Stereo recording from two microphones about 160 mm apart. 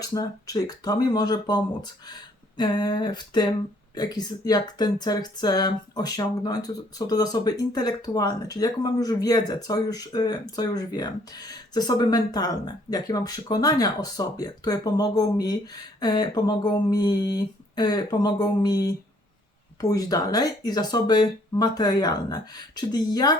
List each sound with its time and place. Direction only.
0.0 s speech: 25° left (ahead or behind)